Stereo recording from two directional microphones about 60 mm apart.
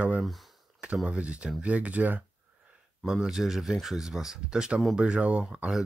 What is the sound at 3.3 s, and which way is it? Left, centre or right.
Speech, centre.